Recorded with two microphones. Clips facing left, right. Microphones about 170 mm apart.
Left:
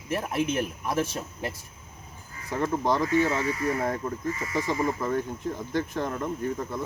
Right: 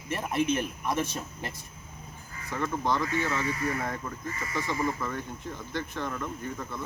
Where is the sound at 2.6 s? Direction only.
40° left (ahead or behind).